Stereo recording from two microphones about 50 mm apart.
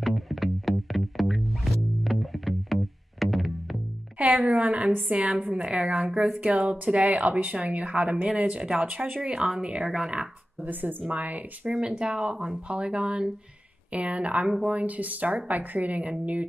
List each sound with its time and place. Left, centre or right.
0.0 s music: centre
4.2 s a woman's voice: right
10.6 s a woman's voice: right
11.7 s a woman's voice: centre